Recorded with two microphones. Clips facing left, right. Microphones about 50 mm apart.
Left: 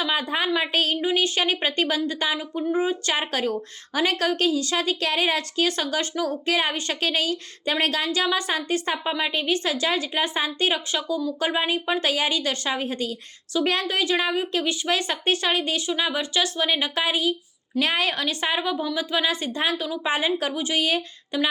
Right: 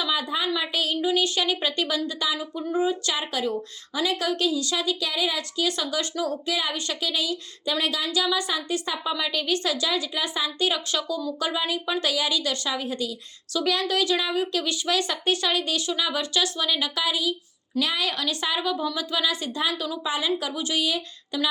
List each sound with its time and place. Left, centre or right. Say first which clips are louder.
0.0 s speech: left 2 dB; left
20.1 s speech: left 3 dB; left